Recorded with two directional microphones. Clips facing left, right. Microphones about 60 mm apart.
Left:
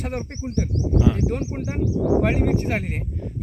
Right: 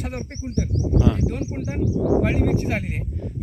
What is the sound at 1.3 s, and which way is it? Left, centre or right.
Speech, left.